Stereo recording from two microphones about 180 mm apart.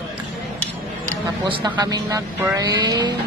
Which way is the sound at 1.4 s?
25° right (ahead or behind).